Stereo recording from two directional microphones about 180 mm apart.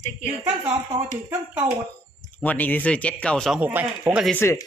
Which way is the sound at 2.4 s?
10° left (ahead or behind).